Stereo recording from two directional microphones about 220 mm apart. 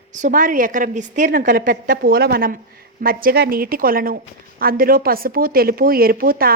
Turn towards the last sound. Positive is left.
turn(degrees=-40)  # may be behind; listen again after turning